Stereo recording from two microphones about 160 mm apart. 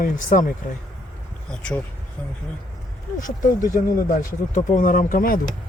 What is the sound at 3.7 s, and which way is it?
Speech, 55° left (ahead or behind).